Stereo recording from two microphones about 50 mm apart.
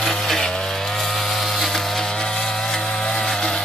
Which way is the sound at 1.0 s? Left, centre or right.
Centre.